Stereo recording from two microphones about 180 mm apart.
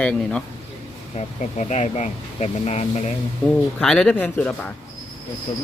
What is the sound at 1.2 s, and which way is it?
Speech, 40° left (ahead or behind).